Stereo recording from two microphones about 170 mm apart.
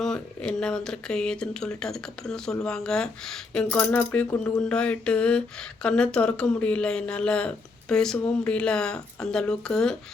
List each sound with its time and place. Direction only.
0.0 s speech: 5° left (ahead or behind)
4.6 s mantra: 5° left (ahead or behind)
5.8 s speech: 5° left (ahead or behind)